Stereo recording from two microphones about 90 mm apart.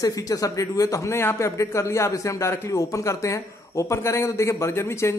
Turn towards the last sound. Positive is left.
turn(degrees=30)  # may be behind; listen again after turning